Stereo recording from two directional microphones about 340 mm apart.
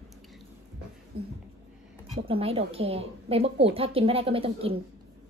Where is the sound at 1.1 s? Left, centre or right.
Centre.